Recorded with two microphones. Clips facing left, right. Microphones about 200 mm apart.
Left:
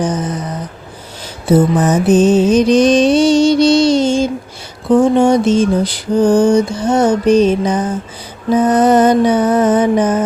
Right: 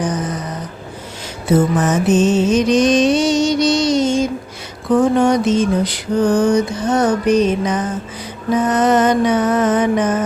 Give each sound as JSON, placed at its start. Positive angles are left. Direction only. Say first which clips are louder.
{"t": 1.5, "sound": "mantra", "louder": "left 3 dB", "side_deg": 35}